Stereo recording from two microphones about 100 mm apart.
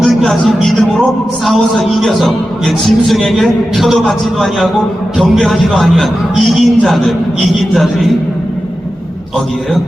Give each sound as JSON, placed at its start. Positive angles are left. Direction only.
{"t": 0.0, "sound": "a man's voice", "side_deg": 0}
{"t": 5.1, "sound": "a man's voice", "side_deg": 0}